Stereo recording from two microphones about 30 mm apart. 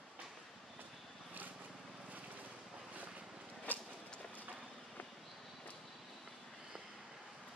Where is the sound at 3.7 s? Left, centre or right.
Left.